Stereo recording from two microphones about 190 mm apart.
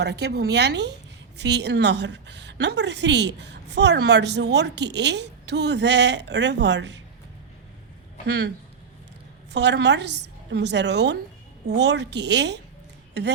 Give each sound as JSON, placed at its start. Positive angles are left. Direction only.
{"t": 0.0, "sound": "a woman's voice", "side_deg": -60}
{"t": 9.5, "sound": "a woman's voice", "side_deg": -65}